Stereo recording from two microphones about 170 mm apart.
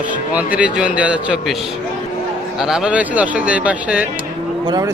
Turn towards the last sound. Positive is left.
turn(degrees=-25)  # may be behind; listen again after turning